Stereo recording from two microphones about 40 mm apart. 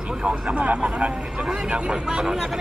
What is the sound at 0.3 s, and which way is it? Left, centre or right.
Speech, right.